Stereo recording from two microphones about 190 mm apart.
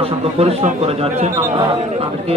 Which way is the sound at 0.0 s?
30° right (ahead or behind).